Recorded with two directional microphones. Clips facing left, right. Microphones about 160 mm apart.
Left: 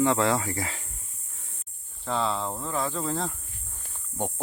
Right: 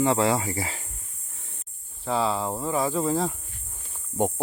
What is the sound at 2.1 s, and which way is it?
Speech, 5° right (ahead or behind).